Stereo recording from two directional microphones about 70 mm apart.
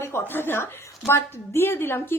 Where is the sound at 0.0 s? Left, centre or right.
Left.